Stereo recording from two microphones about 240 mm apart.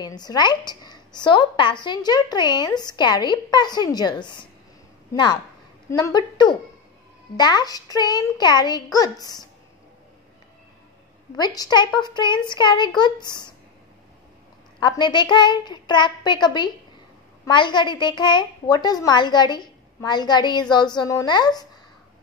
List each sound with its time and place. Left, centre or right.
0.0 s a woman's voice: centre
11.3 s a woman's voice: centre
14.8 s a woman's voice: centre